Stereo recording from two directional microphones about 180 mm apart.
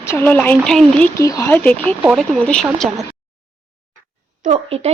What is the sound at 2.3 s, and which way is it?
Speech, 5° left (ahead or behind).